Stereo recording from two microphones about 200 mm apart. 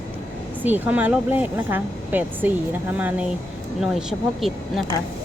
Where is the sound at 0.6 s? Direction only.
10° right (ahead or behind).